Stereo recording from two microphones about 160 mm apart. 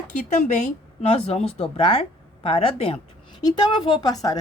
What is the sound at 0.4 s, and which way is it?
Speech, 45° left (ahead or behind).